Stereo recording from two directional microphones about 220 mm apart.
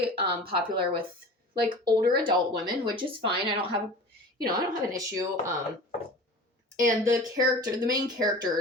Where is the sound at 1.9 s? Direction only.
25° right (ahead or behind).